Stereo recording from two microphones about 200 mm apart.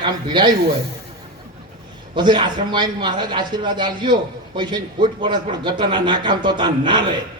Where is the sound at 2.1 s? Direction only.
25° right (ahead or behind).